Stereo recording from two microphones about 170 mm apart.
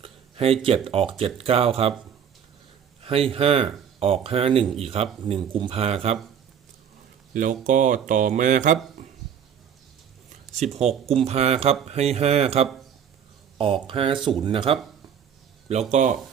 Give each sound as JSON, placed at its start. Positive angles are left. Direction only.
{"t": 0.0, "sound": "speech", "side_deg": -35}
{"t": 3.0, "sound": "speech", "side_deg": -35}
{"t": 7.3, "sound": "speech", "side_deg": -50}
{"t": 10.6, "sound": "speech", "side_deg": -40}
{"t": 13.8, "sound": "speech", "side_deg": -30}
{"t": 15.7, "sound": "speech", "side_deg": -40}